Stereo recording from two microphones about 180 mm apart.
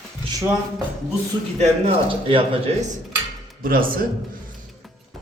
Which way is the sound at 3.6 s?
50° right (ahead or behind).